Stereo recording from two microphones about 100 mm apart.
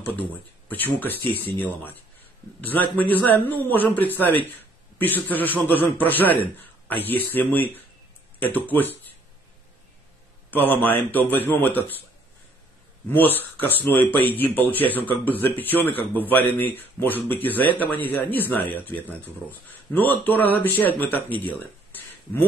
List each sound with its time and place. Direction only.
0.0 s speech: 15° left (ahead or behind)
10.5 s speech: 20° left (ahead or behind)
13.1 s speech: 20° left (ahead or behind)